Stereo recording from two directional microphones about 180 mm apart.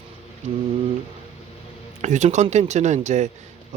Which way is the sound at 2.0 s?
40° right (ahead or behind).